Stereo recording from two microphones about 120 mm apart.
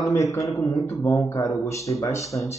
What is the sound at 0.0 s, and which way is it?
A man's voice, 25° left (ahead or behind).